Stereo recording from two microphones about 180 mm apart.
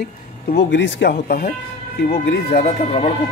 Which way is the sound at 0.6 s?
80° left.